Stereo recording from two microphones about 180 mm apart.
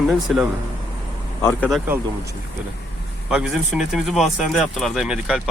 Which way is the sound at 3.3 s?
5° right (ahead or behind).